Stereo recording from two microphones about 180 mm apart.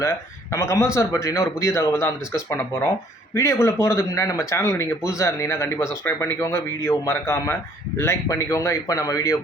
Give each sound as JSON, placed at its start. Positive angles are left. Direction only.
{"t": 0.0, "sound": "a man's voice", "side_deg": 15}